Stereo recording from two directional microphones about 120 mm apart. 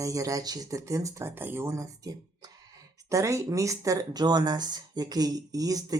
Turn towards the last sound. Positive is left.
turn(degrees=-30)  # may be behind; listen again after turning